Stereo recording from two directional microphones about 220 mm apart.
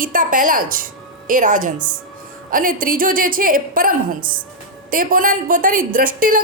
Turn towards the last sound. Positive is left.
turn(degrees=-40)  # may be behind; listen again after turning